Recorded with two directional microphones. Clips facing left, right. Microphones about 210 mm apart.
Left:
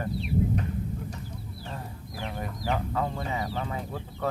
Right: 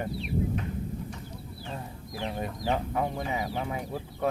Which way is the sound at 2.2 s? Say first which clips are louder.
Right 2 dB; 25° right (ahead or behind).